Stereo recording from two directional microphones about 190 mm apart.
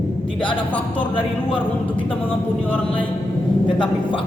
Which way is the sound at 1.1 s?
25° left (ahead or behind).